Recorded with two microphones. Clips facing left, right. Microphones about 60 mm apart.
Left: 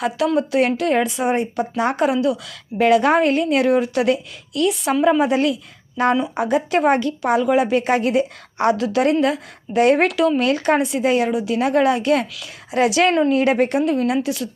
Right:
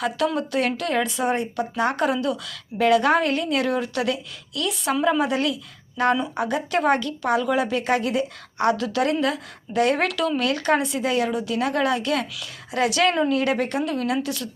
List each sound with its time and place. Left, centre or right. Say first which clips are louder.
0.2 s speech: left 4 dB; centre
0.6 s a woman's voice: left 5 dB; left
2.7 s a woman's voice: left 3 dB; left
6.1 s speech: left 5 dB; centre
6.4 s a woman's voice: left 7 dB; left